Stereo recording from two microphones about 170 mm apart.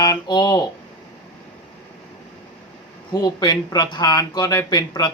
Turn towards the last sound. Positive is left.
turn(degrees=25)  # may be behind; listen again after turning